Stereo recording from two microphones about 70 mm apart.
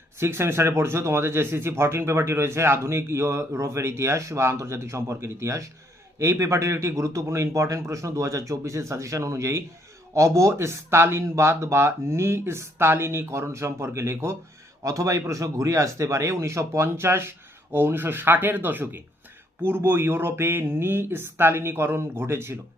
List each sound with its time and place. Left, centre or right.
0.2 s a man's voice: right